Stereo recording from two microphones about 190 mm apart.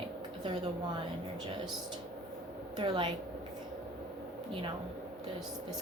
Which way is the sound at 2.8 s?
25° right (ahead or behind).